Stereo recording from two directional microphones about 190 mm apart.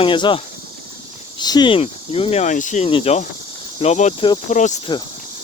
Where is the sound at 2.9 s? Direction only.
30° left (ahead or behind).